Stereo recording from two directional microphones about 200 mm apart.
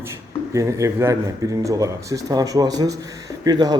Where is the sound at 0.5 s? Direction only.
15° right (ahead or behind).